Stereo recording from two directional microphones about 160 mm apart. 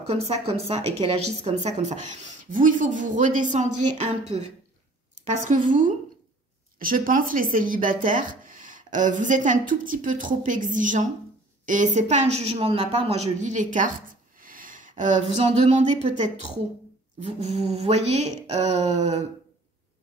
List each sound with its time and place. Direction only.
0.0 s a woman's voice: 40° right (ahead or behind)